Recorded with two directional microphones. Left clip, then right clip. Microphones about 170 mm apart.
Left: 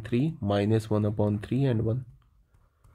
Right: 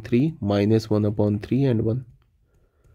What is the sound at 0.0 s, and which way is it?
Speech, 35° right (ahead or behind).